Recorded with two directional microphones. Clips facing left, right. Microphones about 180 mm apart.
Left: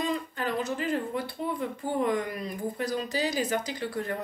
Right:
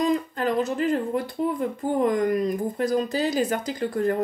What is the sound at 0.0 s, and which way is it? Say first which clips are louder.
Speech: right 7 dB; 40° right (ahead or behind).